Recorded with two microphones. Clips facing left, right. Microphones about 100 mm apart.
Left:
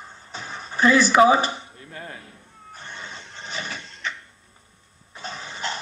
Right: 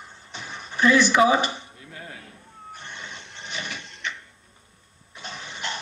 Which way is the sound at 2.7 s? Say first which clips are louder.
Left 1 dB; 35° left (ahead or behind).